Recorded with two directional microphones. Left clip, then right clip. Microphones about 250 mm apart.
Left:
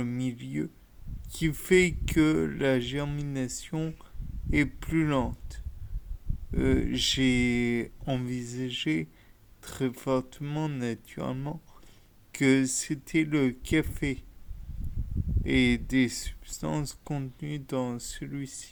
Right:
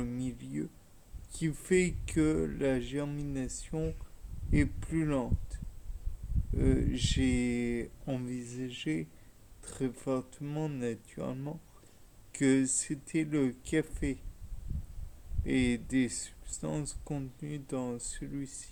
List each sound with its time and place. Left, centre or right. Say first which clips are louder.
0.0 s a sound: left 5 dB; left
1.3 s speech: left 6 dB; left
15.4 s speech: left 6 dB; left